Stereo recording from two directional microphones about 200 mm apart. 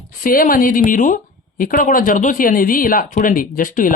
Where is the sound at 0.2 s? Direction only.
45° left (ahead or behind).